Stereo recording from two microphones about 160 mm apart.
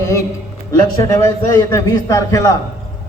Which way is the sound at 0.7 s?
20° left (ahead or behind).